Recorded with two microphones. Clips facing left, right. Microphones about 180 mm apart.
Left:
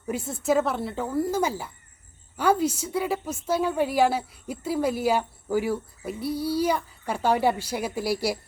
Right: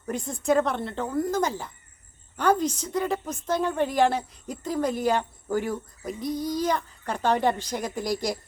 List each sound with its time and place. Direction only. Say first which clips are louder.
0.1 s a woman's voice: even; 5° left (ahead or behind)